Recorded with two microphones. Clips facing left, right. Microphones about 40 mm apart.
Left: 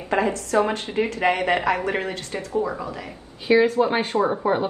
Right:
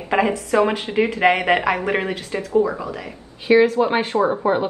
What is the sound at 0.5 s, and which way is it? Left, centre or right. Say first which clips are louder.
Speech: right 4 dB; right.